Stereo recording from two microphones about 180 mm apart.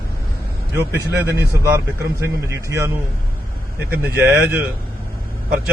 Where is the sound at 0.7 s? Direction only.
15° right (ahead or behind).